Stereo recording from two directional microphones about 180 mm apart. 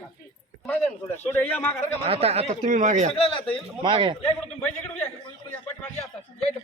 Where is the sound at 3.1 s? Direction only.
30° left (ahead or behind).